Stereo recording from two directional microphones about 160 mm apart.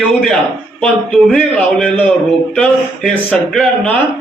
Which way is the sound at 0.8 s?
5° left (ahead or behind).